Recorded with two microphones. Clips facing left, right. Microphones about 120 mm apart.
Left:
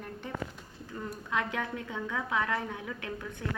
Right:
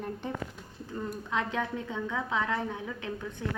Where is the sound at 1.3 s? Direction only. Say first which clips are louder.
Right 1 dB; 25° right (ahead or behind).